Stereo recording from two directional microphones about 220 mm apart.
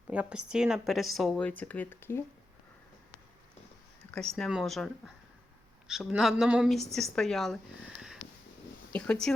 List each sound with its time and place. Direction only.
0.1 s a woman's voice: 5° right (ahead or behind); by 2.2 s 10° left (ahead or behind)
4.1 s a woman's voice: 5° left (ahead or behind)
8.9 s speech: 5° left (ahead or behind)